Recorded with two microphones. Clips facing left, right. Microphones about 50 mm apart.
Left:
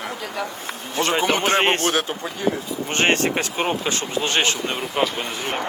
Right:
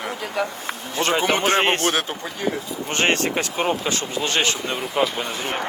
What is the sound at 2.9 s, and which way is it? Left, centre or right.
Speech, left.